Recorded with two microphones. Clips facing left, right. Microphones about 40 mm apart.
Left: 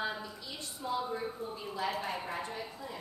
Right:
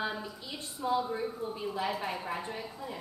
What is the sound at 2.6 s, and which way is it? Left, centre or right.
Speech, centre.